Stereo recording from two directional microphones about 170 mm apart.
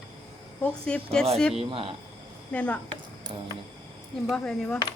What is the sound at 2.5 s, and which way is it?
Speech, 10° left (ahead or behind).